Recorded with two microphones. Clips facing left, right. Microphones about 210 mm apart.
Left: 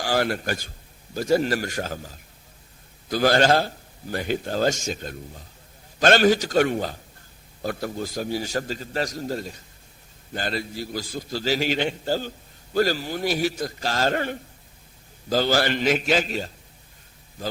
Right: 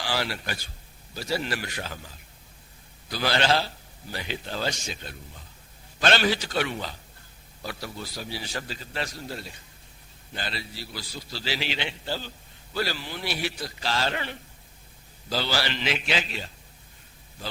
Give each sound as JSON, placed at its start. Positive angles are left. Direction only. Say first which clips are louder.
{"t": 0.0, "sound": "a man's voice", "louder": "left 7 dB", "side_deg": 50}